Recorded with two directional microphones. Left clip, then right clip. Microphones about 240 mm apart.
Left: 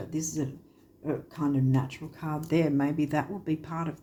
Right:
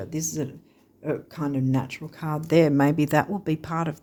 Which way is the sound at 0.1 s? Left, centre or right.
Right.